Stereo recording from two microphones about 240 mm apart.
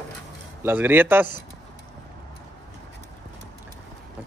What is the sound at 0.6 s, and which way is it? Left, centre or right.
Speech, centre.